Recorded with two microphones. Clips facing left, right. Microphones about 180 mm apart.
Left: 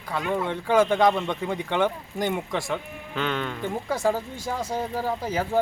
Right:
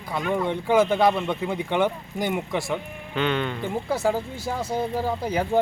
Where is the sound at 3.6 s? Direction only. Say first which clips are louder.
Right 1 dB; 10° right (ahead or behind).